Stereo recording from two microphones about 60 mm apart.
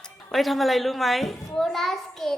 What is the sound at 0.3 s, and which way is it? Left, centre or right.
Speech, centre.